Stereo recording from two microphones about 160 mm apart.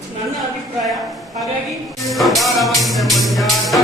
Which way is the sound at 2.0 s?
Centre (ahead or behind).